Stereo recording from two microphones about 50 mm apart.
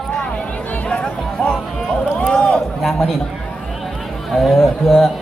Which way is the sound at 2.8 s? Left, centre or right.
Centre.